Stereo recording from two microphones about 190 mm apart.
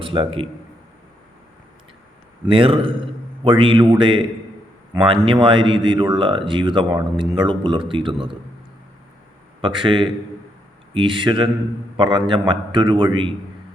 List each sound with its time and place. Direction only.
0.0 s a man's voice: 25° right (ahead or behind)
2.5 s speech: 30° right (ahead or behind)
9.6 s speech: 25° right (ahead or behind)